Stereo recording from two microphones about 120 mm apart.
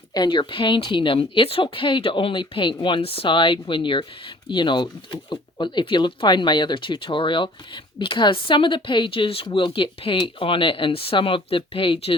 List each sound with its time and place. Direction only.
0.1 s speech: 40° left (ahead or behind)